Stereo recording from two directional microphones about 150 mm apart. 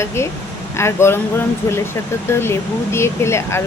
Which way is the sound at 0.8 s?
15° left (ahead or behind).